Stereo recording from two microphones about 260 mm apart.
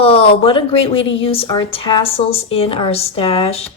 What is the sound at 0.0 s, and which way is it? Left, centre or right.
Speech, left.